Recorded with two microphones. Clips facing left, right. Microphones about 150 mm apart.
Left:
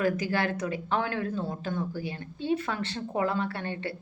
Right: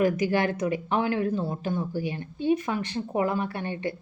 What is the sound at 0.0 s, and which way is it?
Speech, 15° right (ahead or behind).